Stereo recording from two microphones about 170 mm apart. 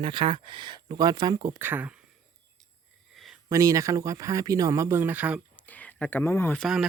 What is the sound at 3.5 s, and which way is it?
Speech, 20° right (ahead or behind).